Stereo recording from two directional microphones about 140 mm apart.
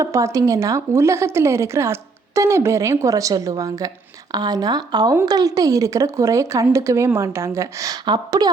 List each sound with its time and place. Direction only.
0.0 s a woman's voice: 20° right (ahead or behind)